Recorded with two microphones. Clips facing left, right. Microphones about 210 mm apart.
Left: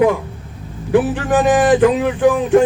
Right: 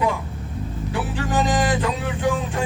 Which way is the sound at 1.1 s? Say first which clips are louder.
Left 7 dB; 55° left (ahead or behind).